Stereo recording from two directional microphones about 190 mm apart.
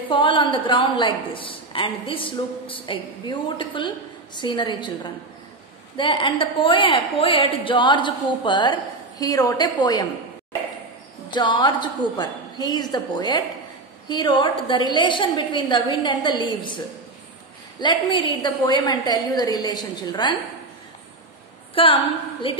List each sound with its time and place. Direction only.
0.1 s a woman's voice: 25° left (ahead or behind)
11.3 s a woman's voice: 25° left (ahead or behind)
21.7 s a woman's voice: 30° left (ahead or behind)